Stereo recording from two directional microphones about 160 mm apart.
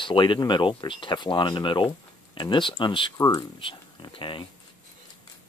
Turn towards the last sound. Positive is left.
turn(degrees=30)  # may be behind; listen again after turning